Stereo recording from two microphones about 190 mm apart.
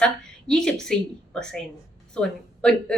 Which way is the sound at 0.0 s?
5° left (ahead or behind).